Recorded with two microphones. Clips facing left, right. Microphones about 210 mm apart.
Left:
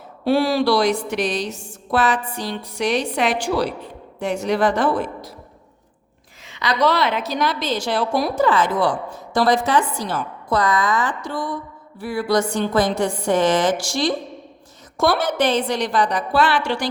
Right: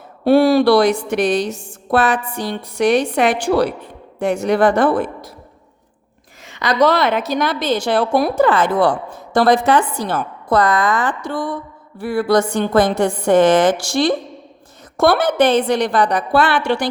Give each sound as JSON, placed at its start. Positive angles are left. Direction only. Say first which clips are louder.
{"t": 0.3, "sound": "a woman's voice", "louder": "right 6 dB", "side_deg": -55}
{"t": 6.4, "sound": "a woman's voice", "louder": "right 4 dB", "side_deg": -50}